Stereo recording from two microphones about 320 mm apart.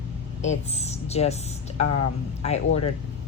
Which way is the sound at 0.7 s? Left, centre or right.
Centre.